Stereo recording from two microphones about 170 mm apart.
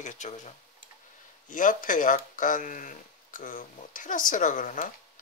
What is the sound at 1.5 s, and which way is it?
Speech, 50° left (ahead or behind).